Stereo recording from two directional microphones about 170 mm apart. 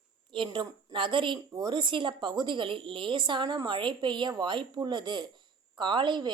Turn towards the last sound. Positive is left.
turn(degrees=-25)  # may be behind; listen again after turning